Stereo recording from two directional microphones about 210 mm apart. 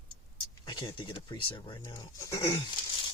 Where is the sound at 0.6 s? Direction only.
20° left (ahead or behind).